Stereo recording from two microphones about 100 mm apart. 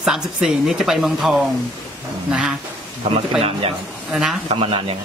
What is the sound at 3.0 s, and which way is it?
Speech, 65° right (ahead or behind).